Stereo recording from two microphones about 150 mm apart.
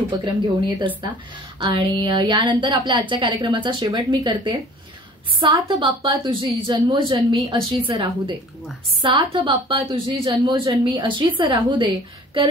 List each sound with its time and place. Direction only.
0.1 s a woman's voice: 30° right (ahead or behind)